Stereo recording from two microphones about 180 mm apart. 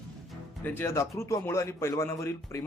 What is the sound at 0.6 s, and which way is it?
Speech, 10° left (ahead or behind).